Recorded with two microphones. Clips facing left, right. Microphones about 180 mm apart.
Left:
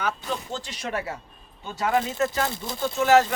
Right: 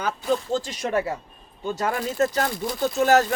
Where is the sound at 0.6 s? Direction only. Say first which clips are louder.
Right 5 dB; 45° right (ahead or behind).